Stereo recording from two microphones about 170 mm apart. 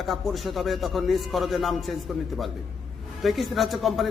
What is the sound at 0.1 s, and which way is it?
A man's voice, centre (ahead or behind).